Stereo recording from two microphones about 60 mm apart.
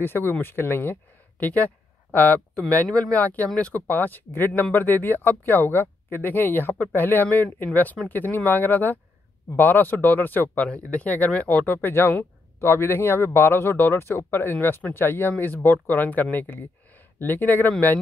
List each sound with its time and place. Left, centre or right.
0.0 s speech: left
1.4 s speech: left